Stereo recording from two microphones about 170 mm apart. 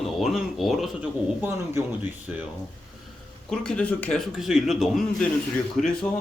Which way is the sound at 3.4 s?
5° left (ahead or behind).